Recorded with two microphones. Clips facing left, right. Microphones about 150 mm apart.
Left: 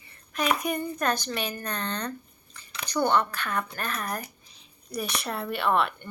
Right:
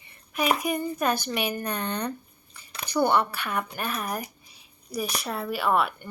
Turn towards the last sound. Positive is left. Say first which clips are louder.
# right 1 dB
turn(degrees=-5)  # may be behind; listen again after turning